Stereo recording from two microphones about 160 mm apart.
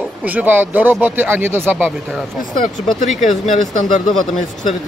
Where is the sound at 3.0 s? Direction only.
50° left (ahead or behind).